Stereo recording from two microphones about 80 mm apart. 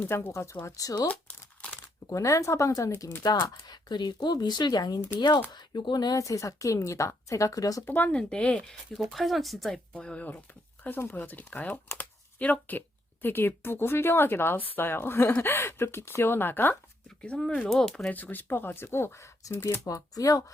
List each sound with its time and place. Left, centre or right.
0.1 s speech: left
0.6 s a woman's voice: left
1.0 s crumpling: centre
2.0 s speech: left
3.2 s speech: left
5.5 s a woman's voice: left
7.9 s speech: left
9.0 s speech: centre
9.9 s speech: centre
10.8 s speech: left
11.9 s a sound: left
13.2 s speech: left
17.2 s speech: centre
18.1 s speech: left